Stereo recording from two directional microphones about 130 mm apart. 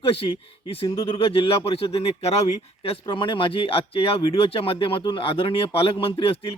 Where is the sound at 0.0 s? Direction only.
45° left (ahead or behind).